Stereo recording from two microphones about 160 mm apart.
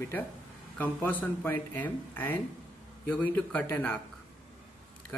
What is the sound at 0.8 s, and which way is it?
Speech, 10° left (ahead or behind).